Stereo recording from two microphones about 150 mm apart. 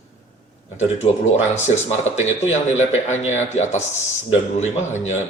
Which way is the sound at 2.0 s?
50° left (ahead or behind).